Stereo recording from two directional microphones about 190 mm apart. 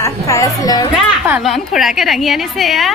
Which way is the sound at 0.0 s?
15° left (ahead or behind).